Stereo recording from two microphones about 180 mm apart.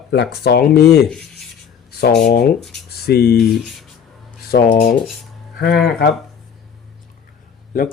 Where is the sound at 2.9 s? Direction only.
60° left (ahead or behind).